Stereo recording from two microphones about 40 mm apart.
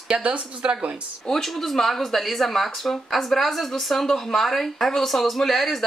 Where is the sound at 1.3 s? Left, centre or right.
Centre.